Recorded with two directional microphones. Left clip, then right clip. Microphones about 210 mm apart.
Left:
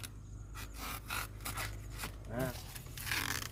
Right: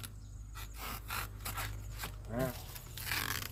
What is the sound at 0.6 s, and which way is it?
Gasp, centre (ahead or behind).